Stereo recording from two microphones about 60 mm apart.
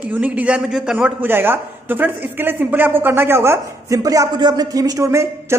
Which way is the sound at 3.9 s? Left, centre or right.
Right.